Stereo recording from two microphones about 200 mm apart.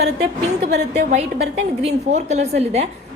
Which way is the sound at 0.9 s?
35° right (ahead or behind).